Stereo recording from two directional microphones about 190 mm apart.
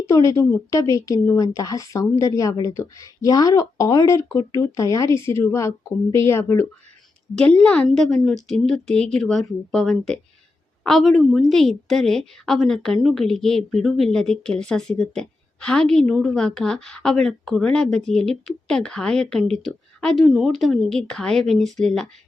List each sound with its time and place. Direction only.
0.1 s a woman's voice: 15° left (ahead or behind)